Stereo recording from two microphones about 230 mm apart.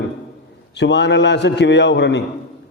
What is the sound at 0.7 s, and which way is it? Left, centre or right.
A man's voice, left.